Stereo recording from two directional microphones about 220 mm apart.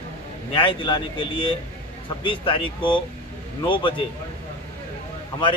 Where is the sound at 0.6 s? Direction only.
20° left (ahead or behind).